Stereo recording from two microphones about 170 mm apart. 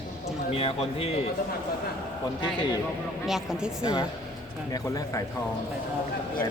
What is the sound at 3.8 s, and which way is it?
A man's voice, 25° left (ahead or behind).